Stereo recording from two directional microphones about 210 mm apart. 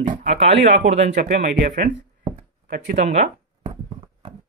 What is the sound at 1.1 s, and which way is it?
Speech, 50° right (ahead or behind).